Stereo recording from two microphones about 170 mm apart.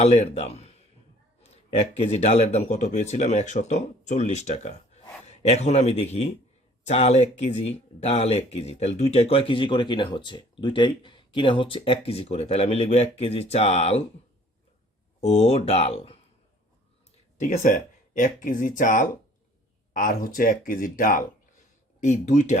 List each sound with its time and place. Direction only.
0.0 s speech: 35° left (ahead or behind)
15.2 s speech: 40° left (ahead or behind)
17.4 s speech: 45° left (ahead or behind)